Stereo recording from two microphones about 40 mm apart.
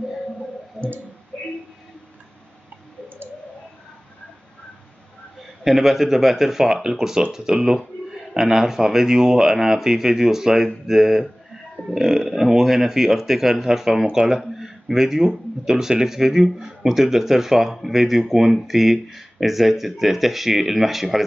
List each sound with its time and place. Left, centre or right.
0.7 s clicking: right
5.6 s a man's voice: centre